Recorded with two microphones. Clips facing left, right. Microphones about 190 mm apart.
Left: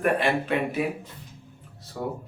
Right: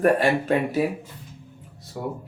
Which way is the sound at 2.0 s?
10° right (ahead or behind).